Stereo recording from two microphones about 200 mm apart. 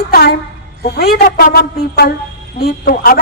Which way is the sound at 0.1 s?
50° left (ahead or behind).